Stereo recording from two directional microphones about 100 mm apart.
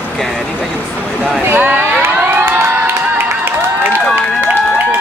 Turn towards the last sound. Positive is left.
turn(degrees=-20)  # may be behind; listen again after turning